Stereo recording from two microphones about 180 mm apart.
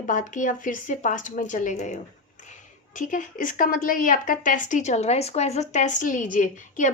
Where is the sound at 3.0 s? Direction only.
45° left (ahead or behind).